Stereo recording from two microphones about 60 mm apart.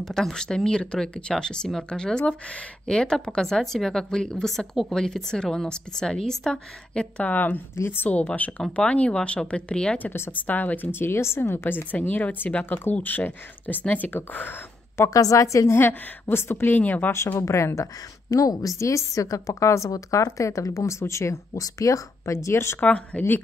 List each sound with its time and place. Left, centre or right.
0.0 s a woman's voice: centre
7.3 s a woman's voice: left
7.7 s speech: left
8.0 s a woman's voice: left
10.9 s a woman's voice: left
15.0 s speech: left
15.8 s a woman's voice: left
17.3 s speech: left
18.3 s a woman's voice: left
20.2 s speech: left
21.6 s speech: left
22.8 s speech: centre